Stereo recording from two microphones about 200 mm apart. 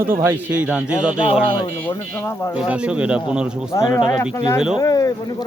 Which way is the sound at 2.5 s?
5° right (ahead or behind).